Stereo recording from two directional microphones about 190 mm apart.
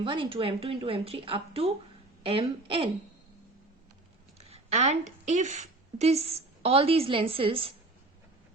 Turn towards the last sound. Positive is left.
turn(degrees=-30)  # may be behind; listen again after turning